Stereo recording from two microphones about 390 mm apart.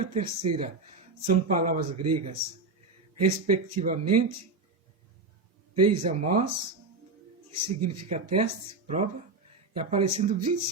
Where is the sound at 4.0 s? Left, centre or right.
Right.